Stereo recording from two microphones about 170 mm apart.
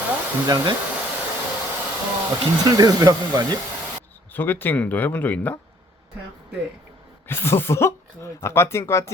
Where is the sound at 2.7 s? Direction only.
20° right (ahead or behind).